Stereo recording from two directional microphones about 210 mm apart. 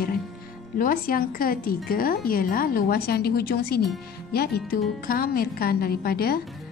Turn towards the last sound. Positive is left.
turn(degrees=45)  # may be behind; listen again after turning